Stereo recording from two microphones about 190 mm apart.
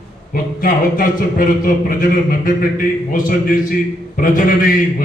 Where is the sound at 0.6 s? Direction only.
50° left (ahead or behind).